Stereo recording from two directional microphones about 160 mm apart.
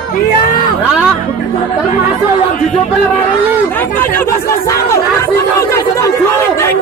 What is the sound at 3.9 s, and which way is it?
Speech, 15° left (ahead or behind).